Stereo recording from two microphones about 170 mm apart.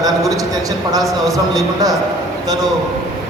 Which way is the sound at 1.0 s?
Centre (ahead or behind).